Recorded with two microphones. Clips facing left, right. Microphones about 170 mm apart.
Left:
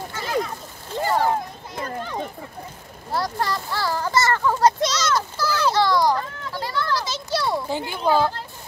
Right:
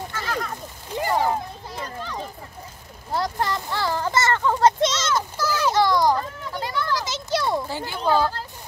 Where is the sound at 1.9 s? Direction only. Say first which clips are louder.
Left 6 dB; 50° left (ahead or behind).